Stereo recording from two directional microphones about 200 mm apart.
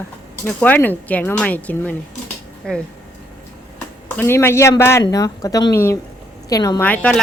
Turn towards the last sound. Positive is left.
turn(degrees=5)  # may be behind; listen again after turning